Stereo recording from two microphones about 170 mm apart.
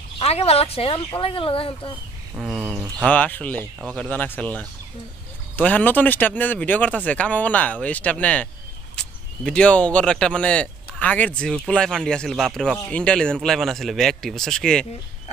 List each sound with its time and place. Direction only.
0.2 s speech: 35° left (ahead or behind)
2.3 s speech: 5° right (ahead or behind)
3.1 s speech: 10° left (ahead or behind)